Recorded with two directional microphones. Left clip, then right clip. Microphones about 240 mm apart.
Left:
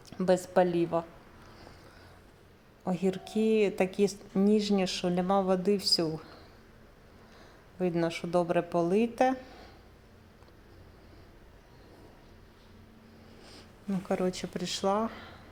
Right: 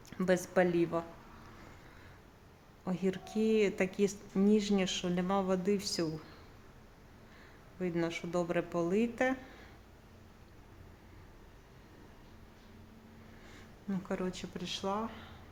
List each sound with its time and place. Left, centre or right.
0.1 s a woman's voice: centre
2.8 s a woman's voice: centre
7.8 s a woman's voice: centre
13.9 s a woman's voice: centre